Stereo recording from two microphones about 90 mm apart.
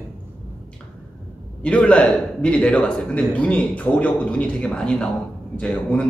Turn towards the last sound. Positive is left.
turn(degrees=10)  # may be behind; listen again after turning